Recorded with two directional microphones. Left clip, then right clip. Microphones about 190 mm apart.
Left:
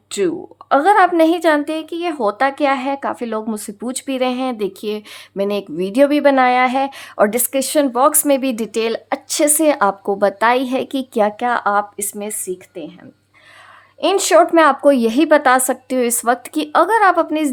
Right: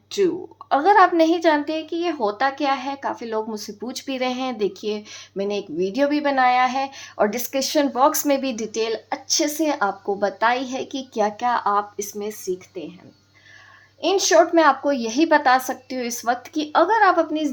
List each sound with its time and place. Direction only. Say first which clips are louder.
0.1 s speech: left 2 dB; 45° left (ahead or behind)
14.0 s speech: left 4 dB; 45° left (ahead or behind)